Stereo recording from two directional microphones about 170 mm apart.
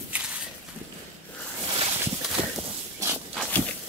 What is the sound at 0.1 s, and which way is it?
Walk, 10° right (ahead or behind).